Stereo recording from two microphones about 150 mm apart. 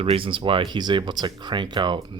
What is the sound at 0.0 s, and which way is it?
Speech, 40° right (ahead or behind).